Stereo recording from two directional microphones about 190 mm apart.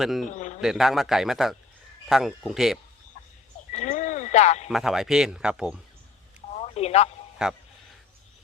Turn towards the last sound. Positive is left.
turn(degrees=-5)  # may be behind; listen again after turning